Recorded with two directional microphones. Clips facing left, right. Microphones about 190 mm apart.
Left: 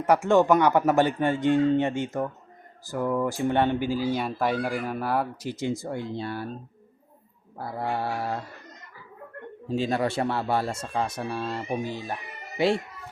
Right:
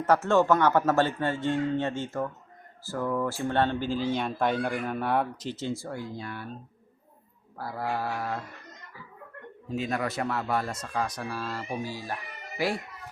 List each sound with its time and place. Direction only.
0.0 s speech: 15° left (ahead or behind); by 6.5 s 35° left (ahead or behind)
7.6 s speech: 25° left (ahead or behind)
9.6 s speech: 30° left (ahead or behind)